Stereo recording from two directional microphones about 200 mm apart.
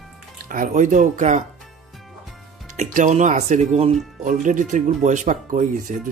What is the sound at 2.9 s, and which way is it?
Speech, 40° right (ahead or behind).